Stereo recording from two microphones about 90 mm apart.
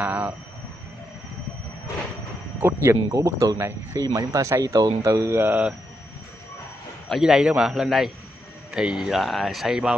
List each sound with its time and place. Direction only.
0.0 s vehicle: 15° right (ahead or behind)
2.6 s speech: 30° right (ahead or behind)
5.4 s a man's voice: 15° right (ahead or behind)
7.1 s a man's voice: 5° right (ahead or behind)